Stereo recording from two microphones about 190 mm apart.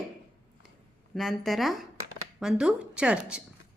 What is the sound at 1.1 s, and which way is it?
A woman's voice, centre (ahead or behind).